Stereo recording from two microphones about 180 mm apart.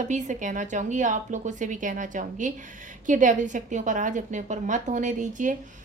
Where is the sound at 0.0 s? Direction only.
40° right (ahead or behind).